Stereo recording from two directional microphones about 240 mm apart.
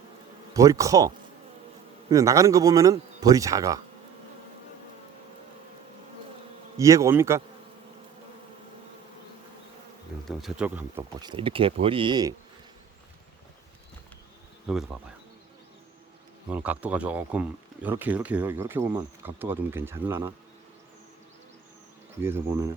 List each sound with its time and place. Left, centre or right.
0.5 s speech: centre
6.7 s speech: centre
10.2 s speech: centre
11.2 s speech: centre
14.7 s speech: centre
16.5 s speech: centre
22.2 s speech: centre